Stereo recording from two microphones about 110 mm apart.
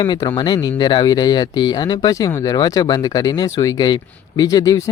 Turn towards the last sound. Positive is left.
turn(degrees=30)  # may be behind; listen again after turning